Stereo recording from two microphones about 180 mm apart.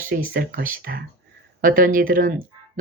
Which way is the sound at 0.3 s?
55° right (ahead or behind).